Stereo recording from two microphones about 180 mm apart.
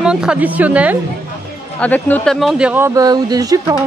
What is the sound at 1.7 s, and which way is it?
Speech, 10° left (ahead or behind).